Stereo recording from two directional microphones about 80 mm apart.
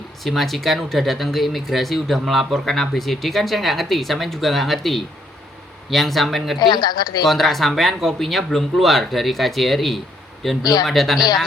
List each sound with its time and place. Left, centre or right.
0.2 s speech: centre
6.6 s a woman's voice: left
7.3 s speech: centre
10.6 s a woman's voice: left
10.8 s speech: centre